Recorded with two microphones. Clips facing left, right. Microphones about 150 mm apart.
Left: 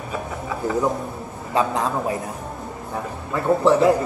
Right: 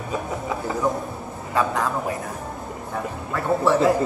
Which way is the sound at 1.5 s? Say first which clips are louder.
Left 1 dB; 25° left (ahead or behind).